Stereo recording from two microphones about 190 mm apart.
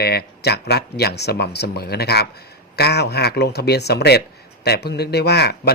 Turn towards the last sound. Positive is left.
turn(degrees=55)  # may be behind; listen again after turning